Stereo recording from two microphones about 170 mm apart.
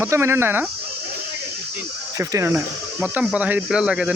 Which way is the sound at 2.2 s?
15° right (ahead or behind).